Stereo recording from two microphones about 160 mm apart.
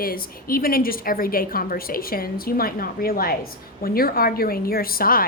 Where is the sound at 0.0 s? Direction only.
65° left (ahead or behind).